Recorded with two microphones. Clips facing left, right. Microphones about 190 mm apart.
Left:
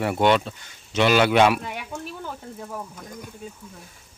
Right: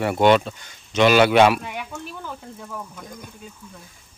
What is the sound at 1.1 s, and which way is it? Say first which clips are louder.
Speech: right 2 dB; 80° right.